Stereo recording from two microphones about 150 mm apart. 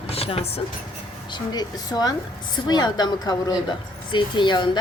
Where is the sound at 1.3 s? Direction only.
25° left (ahead or behind).